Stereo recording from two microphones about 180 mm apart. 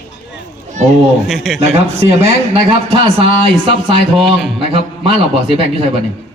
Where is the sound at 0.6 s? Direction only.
40° right (ahead or behind).